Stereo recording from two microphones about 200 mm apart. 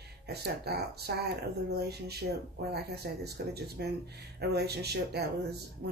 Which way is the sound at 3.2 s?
55° right (ahead or behind).